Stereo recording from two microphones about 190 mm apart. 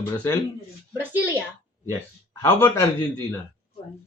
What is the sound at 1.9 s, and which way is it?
A man's voice, 15° left (ahead or behind).